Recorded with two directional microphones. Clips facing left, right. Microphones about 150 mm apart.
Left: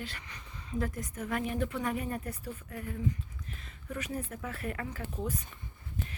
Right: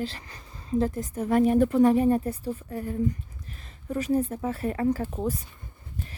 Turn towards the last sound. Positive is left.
turn(degrees=-40)  # may be behind; listen again after turning